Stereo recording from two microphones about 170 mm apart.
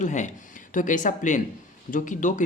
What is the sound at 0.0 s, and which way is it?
A man's voice, 45° left (ahead or behind).